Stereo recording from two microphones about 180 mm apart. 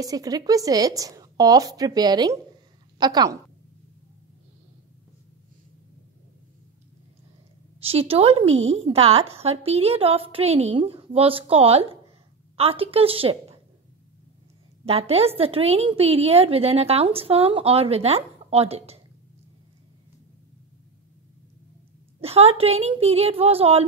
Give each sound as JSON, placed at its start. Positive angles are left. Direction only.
{"t": 0.0, "sound": "a woman's voice", "side_deg": -20}
{"t": 7.8, "sound": "a woman's voice", "side_deg": -30}
{"t": 14.9, "sound": "a woman's voice", "side_deg": -35}
{"t": 22.2, "sound": "a woman's voice", "side_deg": -35}